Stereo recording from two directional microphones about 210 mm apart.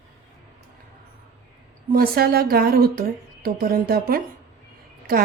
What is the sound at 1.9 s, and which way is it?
Speech, 45° right (ahead or behind).